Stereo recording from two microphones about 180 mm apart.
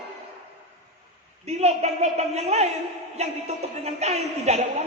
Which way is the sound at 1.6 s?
35° right (ahead or behind).